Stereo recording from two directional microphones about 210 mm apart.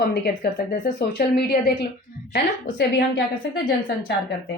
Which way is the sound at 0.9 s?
50° left (ahead or behind).